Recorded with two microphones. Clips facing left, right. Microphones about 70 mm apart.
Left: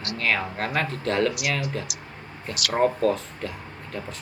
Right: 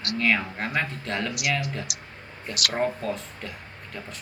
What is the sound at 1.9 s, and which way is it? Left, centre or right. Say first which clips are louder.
Speech: left 1 dB; right.